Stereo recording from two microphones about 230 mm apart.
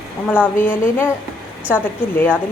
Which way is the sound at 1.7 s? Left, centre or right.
Centre.